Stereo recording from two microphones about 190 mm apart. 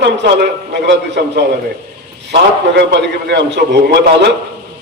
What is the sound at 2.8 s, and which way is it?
A man's voice, 65° right (ahead or behind).